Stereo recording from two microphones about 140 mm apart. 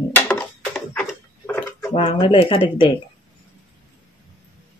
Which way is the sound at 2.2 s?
40° left (ahead or behind).